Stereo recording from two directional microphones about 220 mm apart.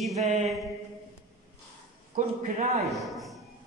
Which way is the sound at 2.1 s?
40° right (ahead or behind).